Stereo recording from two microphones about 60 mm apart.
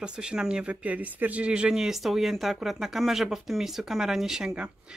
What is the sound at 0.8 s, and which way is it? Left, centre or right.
Speech, right.